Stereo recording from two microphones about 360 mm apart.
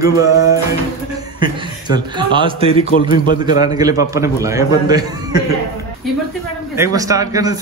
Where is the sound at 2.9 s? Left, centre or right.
Left.